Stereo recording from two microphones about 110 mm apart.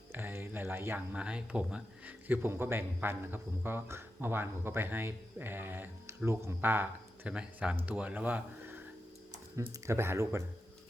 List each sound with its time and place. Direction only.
0.1 s speech: 20° right (ahead or behind)
9.8 s speech: 25° right (ahead or behind)